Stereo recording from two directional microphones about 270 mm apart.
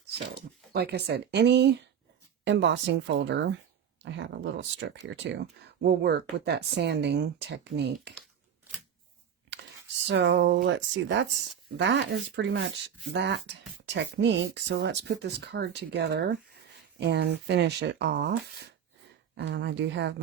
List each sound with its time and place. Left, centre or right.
0.7 s a woman's voice: right
10.1 s speech: right
19.4 s speech: right